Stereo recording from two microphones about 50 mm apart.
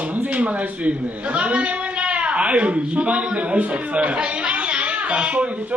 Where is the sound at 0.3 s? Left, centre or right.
Right.